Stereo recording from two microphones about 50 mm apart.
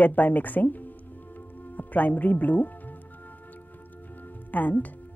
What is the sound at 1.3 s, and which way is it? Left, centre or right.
Music, left.